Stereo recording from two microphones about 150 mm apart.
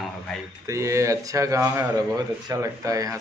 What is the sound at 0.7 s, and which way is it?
A man's voice, 20° right (ahead or behind).